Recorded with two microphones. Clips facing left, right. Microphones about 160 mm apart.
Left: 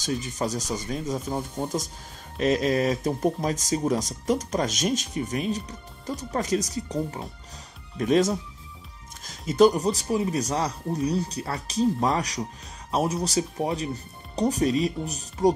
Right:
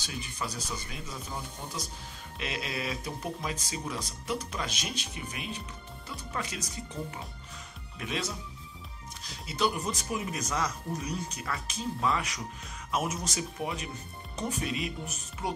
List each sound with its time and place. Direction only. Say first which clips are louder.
0.0 s speech: left 10 dB; 40° left (ahead or behind)
9.5 s speech: left 12 dB; 40° left (ahead or behind)